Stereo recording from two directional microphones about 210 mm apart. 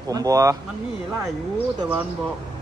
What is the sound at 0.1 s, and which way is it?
Speech, 15° right (ahead or behind).